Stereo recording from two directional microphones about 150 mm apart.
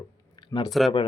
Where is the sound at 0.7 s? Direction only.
Centre (ahead or behind).